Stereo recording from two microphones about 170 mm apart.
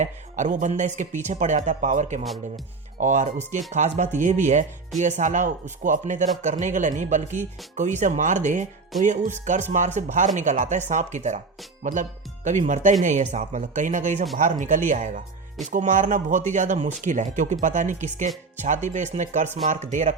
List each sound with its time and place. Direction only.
0.0 s speech: 45° right (ahead or behind)